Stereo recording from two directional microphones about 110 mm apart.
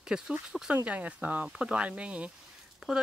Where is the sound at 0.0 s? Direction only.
5° right (ahead or behind).